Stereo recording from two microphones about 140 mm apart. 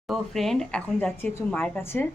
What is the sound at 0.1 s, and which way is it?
A woman's voice, centre (ahead or behind).